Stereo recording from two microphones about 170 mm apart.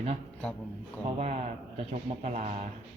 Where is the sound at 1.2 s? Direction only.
40° right (ahead or behind).